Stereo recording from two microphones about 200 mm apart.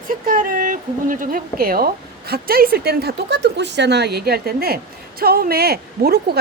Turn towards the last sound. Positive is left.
turn(degrees=-50)  # may be behind; listen again after turning